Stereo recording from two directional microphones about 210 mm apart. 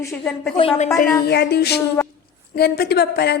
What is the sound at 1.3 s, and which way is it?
A woman's voice, 50° left (ahead or behind).